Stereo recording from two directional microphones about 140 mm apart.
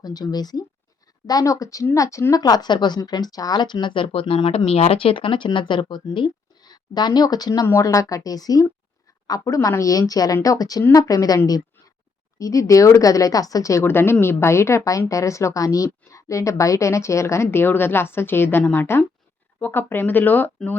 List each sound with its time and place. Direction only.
0.0 s speech: 30° left (ahead or behind); by 20.7 s 10° left (ahead or behind)